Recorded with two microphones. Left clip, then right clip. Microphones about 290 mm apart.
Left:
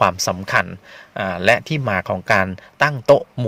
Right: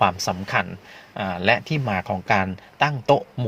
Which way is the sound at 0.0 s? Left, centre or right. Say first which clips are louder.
Left 3 dB; left.